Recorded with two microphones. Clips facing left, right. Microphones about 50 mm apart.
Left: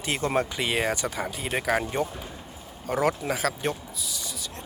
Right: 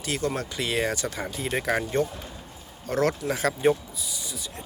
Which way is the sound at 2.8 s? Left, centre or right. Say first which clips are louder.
Even; centre.